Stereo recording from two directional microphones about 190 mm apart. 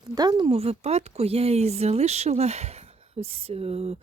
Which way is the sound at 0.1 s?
20° right (ahead or behind).